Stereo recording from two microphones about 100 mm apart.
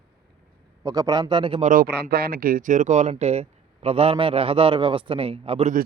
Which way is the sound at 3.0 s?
90° right.